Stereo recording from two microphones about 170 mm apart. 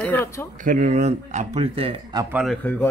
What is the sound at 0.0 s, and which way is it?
Speech, 10° left (ahead or behind).